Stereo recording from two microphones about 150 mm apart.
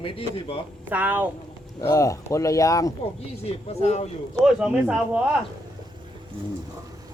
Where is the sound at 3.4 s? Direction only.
45° left (ahead or behind).